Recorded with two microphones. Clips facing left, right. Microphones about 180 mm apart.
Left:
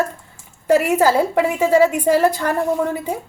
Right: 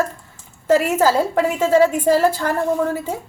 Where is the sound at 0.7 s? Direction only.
15° left (ahead or behind).